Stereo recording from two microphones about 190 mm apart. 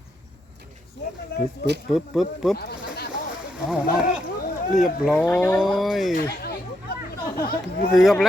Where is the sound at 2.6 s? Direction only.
55° left (ahead or behind).